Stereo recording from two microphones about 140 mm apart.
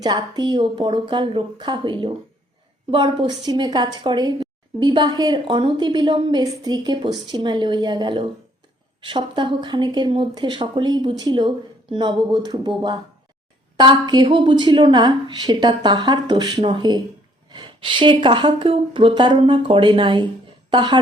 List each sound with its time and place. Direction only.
0.0 s a woman's voice: 30° right (ahead or behind)